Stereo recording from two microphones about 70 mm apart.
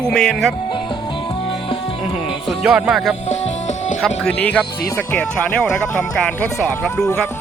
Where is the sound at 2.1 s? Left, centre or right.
Centre.